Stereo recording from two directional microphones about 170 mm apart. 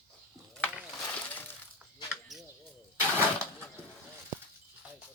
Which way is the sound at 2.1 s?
Centre (ahead or behind).